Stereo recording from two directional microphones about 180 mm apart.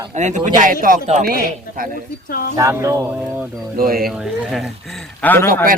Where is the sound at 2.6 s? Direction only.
15° right (ahead or behind).